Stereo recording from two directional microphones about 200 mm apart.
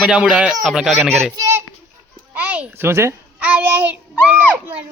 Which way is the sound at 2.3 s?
5° right (ahead or behind).